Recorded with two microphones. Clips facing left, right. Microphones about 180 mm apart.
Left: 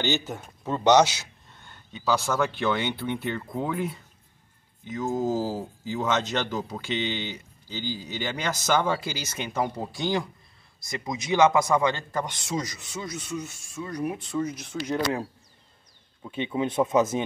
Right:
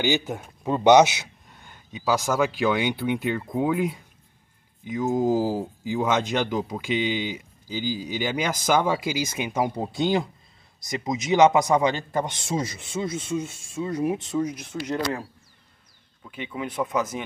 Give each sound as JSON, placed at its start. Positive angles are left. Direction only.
{"t": 0.0, "sound": "a man's voice", "side_deg": -10}
{"t": 16.2, "sound": "speech", "side_deg": 25}